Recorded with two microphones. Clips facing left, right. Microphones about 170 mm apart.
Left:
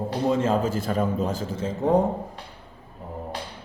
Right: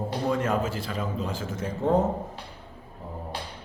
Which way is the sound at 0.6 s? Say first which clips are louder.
Left 7 dB; 45° left (ahead or behind).